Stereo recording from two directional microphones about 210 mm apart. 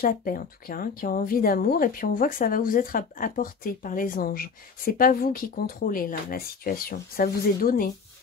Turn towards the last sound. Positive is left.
turn(degrees=45)  # may be behind; listen again after turning